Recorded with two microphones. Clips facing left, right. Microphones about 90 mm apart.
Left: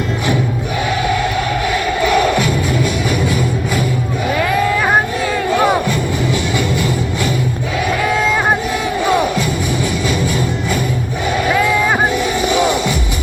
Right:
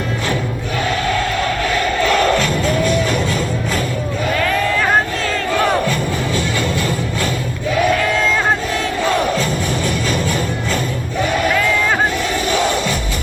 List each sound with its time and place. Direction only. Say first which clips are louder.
2.0 s music: left 1 dB; 15° left (ahead or behind)
4.4 s a sound: left 3 dB; 15° left (ahead or behind)
5.5 s music: left 1 dB; 15° left (ahead or behind)
8.0 s run: left 2 dB; 15° left (ahead or behind)
9.0 s music: left 2 dB; 15° left (ahead or behind)